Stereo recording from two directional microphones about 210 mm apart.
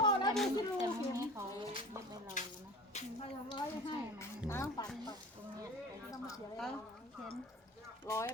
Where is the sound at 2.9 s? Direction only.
25° left (ahead or behind).